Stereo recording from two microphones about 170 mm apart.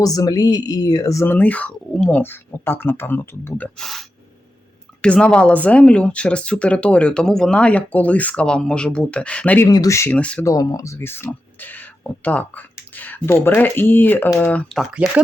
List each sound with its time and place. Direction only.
0.0 s speech: 20° left (ahead or behind)
3.8 s speech: centre (ahead or behind)
5.0 s speech: 5° left (ahead or behind)
9.6 s speech: 20° left (ahead or behind)
10.4 s speech: 20° left (ahead or behind); by 14.8 s 5° left (ahead or behind)